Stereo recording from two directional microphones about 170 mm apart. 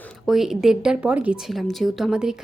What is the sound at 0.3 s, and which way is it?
Speech, centre (ahead or behind).